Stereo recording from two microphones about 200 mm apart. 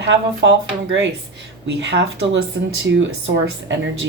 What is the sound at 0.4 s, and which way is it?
Speech, 65° right (ahead or behind).